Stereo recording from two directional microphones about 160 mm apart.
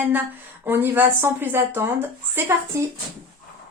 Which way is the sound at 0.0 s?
10° right (ahead or behind).